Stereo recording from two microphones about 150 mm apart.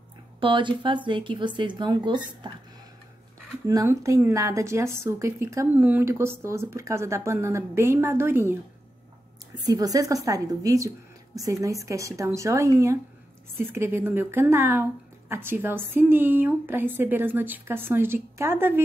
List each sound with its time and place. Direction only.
0.4 s speech: 35° right (ahead or behind)
3.6 s speech: 20° right (ahead or behind)
9.7 s speech: 25° right (ahead or behind)